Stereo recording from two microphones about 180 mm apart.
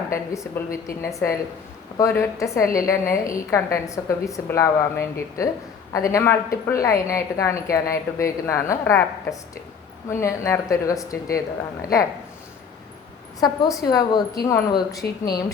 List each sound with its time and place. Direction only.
0.1 s a woman's voice: 15° left (ahead or behind)
13.4 s a woman's voice: 20° left (ahead or behind)